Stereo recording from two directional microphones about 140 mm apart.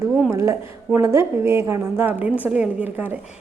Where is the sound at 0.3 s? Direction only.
20° right (ahead or behind).